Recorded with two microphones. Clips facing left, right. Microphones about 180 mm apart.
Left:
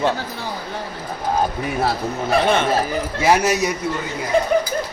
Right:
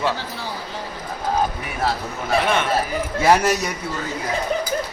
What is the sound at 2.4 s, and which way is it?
Speech, 30° left (ahead or behind).